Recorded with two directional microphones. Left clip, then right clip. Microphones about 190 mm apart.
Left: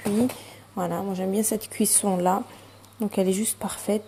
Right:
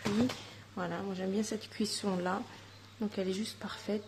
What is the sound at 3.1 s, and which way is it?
Speech, 20° left (ahead or behind).